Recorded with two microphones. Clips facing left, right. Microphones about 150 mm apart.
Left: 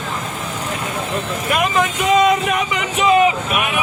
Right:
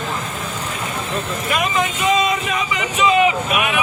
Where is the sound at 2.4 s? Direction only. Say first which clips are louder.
Left 3 dB; 55° left (ahead or behind).